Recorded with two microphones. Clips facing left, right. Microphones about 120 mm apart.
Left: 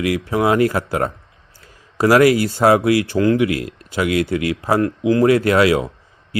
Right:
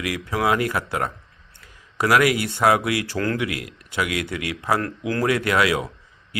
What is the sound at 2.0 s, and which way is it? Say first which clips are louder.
Speech: left 6 dB; 30° left (ahead or behind).